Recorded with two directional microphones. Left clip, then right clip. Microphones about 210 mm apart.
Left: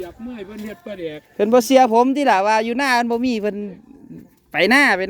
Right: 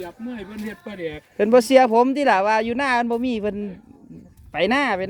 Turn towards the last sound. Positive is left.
turn(degrees=30)  # may be behind; listen again after turning